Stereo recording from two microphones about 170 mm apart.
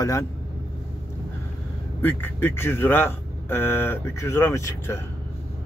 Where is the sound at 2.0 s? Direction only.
15° left (ahead or behind).